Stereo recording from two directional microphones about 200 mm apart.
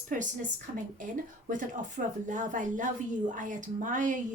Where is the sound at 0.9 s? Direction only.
40° right (ahead or behind).